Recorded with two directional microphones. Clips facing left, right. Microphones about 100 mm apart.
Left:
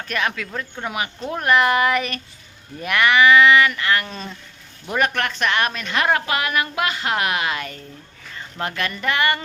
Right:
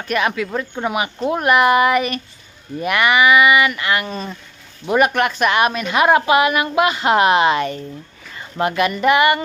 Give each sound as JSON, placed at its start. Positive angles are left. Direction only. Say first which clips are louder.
{"t": 0.1, "sound": "a woman's voice", "louder": "right 6 dB", "side_deg": -10}
{"t": 8.4, "sound": "a woman's voice", "louder": "right 8 dB", "side_deg": -15}